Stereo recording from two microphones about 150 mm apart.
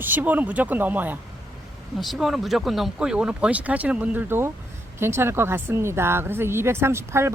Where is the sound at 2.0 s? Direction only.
Centre (ahead or behind).